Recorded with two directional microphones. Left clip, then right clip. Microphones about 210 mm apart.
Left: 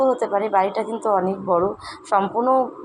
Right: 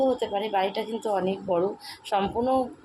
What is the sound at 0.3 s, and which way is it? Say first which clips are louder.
Speech: left 7 dB; 15° right (ahead or behind).